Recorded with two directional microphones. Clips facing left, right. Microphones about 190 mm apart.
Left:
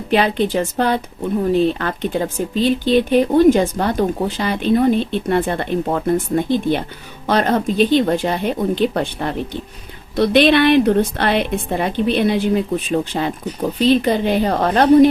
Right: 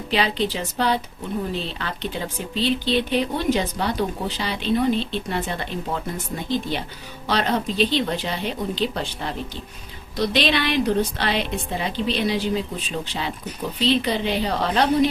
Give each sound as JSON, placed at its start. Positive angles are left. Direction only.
{"t": 0.1, "sound": "a woman's voice", "side_deg": 55}